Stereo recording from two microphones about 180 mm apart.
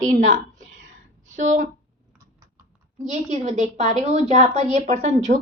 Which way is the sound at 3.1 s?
40° right (ahead or behind).